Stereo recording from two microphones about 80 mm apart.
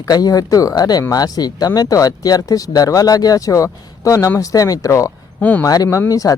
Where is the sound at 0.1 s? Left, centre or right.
Left.